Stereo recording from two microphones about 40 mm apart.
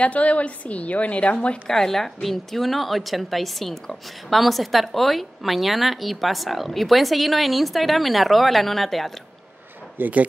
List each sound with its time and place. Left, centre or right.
0.0 s a woman's voice: left
1.7 s a woman's voice: centre
10.0 s speech: right